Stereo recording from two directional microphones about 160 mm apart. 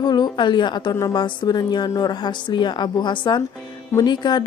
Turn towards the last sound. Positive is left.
turn(degrees=30)  # may be behind; listen again after turning